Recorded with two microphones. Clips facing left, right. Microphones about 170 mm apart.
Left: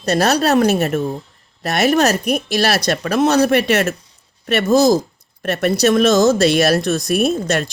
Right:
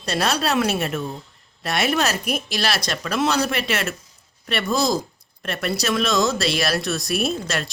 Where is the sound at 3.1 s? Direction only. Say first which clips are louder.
Left 8 dB; 45° left (ahead or behind).